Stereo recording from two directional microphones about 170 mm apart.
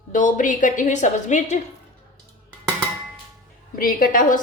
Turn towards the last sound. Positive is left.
turn(degrees=50)  # may be behind; listen again after turning